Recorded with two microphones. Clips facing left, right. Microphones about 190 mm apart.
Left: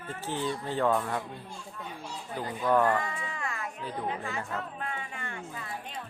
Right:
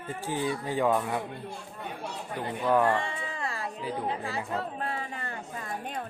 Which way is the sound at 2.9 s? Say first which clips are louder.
Right 1 dB; 30° right (ahead or behind).